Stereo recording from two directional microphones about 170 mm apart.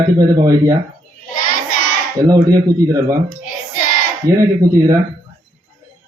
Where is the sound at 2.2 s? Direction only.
20° right (ahead or behind).